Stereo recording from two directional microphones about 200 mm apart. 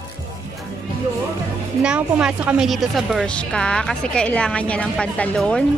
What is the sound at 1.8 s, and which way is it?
A woman's voice, 5° right (ahead or behind).